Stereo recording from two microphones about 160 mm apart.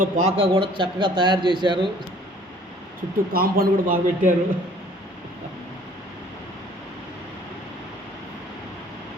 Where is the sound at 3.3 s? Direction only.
65° right (ahead or behind).